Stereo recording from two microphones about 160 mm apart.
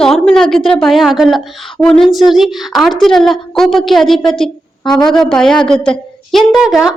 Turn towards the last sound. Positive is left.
turn(degrees=-5)  # may be behind; listen again after turning